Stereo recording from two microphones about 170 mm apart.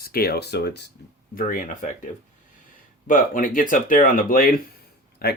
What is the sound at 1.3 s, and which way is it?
Speech, 50° left (ahead or behind).